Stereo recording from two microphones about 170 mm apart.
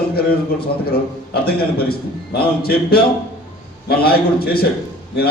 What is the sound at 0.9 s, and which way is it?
A man's voice, 65° left (ahead or behind).